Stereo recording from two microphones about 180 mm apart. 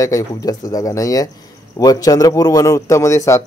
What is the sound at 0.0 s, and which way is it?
A man's voice, 20° left (ahead or behind).